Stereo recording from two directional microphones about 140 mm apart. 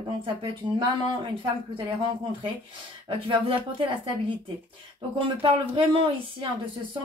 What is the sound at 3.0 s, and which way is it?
Speech, 40° right (ahead or behind).